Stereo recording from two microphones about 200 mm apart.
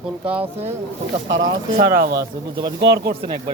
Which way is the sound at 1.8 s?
55° right (ahead or behind).